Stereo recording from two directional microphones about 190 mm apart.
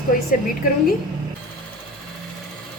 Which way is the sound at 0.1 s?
50° left (ahead or behind).